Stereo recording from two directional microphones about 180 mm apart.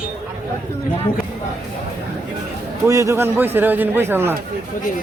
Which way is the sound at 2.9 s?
15° right (ahead or behind).